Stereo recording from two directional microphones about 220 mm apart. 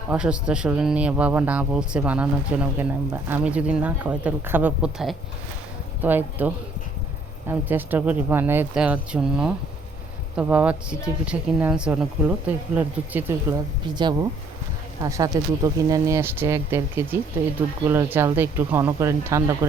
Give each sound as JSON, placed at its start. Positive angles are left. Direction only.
{"t": 0.1, "sound": "speech", "side_deg": -5}
{"t": 13.8, "sound": "speech", "side_deg": -20}